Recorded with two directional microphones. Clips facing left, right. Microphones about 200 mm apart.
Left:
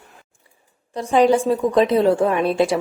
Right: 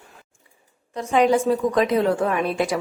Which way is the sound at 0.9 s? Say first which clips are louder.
Left 3 dB; 35° left (ahead or behind).